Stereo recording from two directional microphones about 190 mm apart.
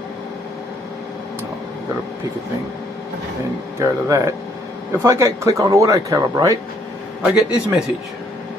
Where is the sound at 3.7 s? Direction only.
15° right (ahead or behind).